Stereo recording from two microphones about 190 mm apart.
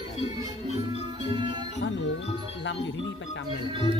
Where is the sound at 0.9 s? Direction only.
30° right (ahead or behind).